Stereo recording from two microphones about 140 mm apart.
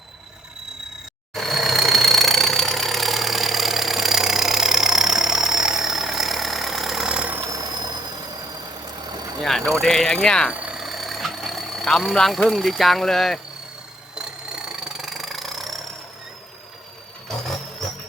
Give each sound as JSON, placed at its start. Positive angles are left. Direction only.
{"t": 1.3, "sound": "engine", "side_deg": 0}
{"t": 7.4, "sound": "engine", "side_deg": -25}
{"t": 9.4, "sound": "vehicle", "side_deg": 0}
{"t": 9.8, "sound": "speech", "side_deg": 5}
{"t": 10.5, "sound": "vehicle", "side_deg": -10}
{"t": 14.2, "sound": "engine knocking", "side_deg": -5}